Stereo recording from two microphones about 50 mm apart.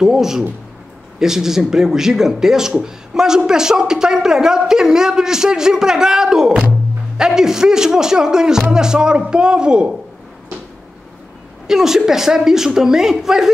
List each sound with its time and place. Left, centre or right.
0.0 s a man's voice: centre
11.6 s a woman's voice: centre